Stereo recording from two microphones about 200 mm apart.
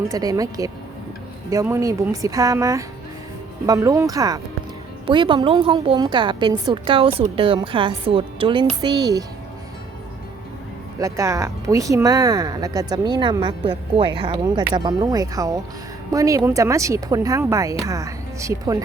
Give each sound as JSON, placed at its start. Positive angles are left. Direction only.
{"t": 0.1, "sound": "a woman's voice", "side_deg": -15}
{"t": 11.0, "sound": "speech", "side_deg": -15}